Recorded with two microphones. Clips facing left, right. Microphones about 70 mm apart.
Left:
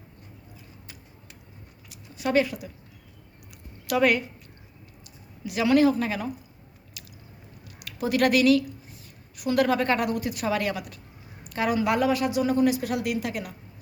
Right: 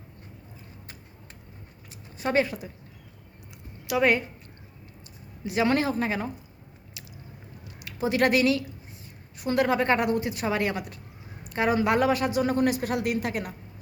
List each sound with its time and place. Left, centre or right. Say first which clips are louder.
1.9 s a sound: left 2 dB; right
3.9 s a woman's voice: left 1 dB; centre
5.5 s a woman's voice: left 4 dB; right
7.0 s squish: even; right
7.6 s a sound: right 1 dB; right
9.4 s a woman's voice: left 1 dB; right